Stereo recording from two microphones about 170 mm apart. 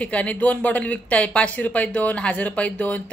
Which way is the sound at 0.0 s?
10° left (ahead or behind).